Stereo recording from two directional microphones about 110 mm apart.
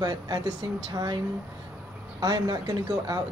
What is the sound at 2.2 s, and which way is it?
Speech, 35° right (ahead or behind).